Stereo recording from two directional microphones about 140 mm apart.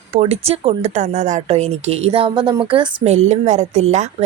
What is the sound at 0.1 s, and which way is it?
A woman's voice, 45° right (ahead or behind).